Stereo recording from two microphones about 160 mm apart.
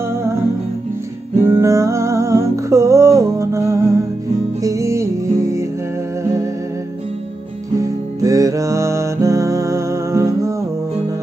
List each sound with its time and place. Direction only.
0.1 s music: 15° right (ahead or behind)
1.4 s music: 20° right (ahead or behind)
7.8 s music: 20° right (ahead or behind)